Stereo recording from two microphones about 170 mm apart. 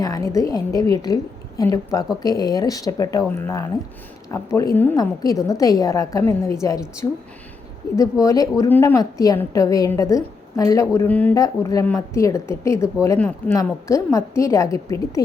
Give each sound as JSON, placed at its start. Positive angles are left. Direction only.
{"t": 0.0, "sound": "a woman's voice", "side_deg": 20}
{"t": 7.8, "sound": "a woman's voice", "side_deg": 20}
{"t": 11.3, "sound": "a woman's voice", "side_deg": 20}